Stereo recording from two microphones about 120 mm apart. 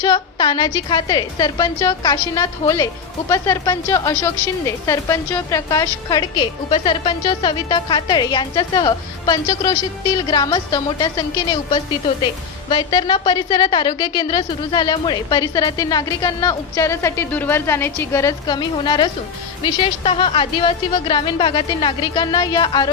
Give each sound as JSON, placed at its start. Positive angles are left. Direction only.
{"t": 0.0, "sound": "a woman's voice", "side_deg": 35}